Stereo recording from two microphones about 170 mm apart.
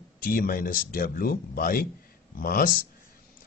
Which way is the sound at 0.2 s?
60° left (ahead or behind).